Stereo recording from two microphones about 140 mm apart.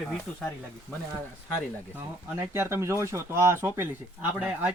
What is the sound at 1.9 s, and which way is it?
Speech, 15° right (ahead or behind).